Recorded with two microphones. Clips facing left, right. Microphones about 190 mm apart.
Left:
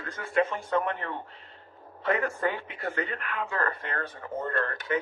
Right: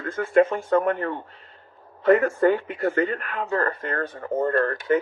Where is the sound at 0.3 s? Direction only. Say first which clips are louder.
Right 7 dB; 45° right (ahead or behind).